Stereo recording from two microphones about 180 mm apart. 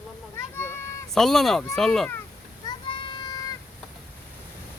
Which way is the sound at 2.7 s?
25° left (ahead or behind).